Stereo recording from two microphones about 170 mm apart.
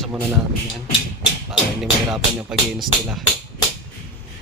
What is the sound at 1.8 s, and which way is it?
Music, 5° right (ahead or behind).